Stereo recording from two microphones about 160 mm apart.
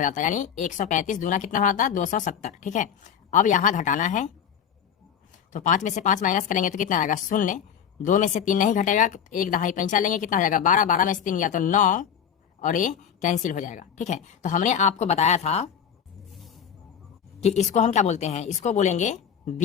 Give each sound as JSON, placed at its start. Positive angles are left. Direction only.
{"t": 0.0, "sound": "speech", "side_deg": 55}
{"t": 5.5, "sound": "speech", "side_deg": 55}
{"t": 17.4, "sound": "speech", "side_deg": 45}